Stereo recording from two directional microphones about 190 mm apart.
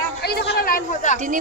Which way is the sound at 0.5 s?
50° left (ahead or behind).